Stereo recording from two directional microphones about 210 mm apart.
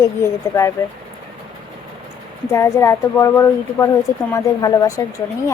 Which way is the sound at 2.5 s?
15° left (ahead or behind).